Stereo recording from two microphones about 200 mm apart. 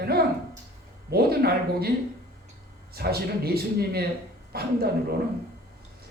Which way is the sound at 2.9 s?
50° right (ahead or behind).